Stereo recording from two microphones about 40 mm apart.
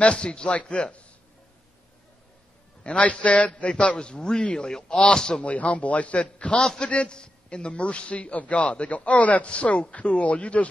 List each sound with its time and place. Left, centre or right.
0.0 s a man's voice: left
2.8 s a man's voice: left; by 5.4 s centre
5.4 s a man's voice: left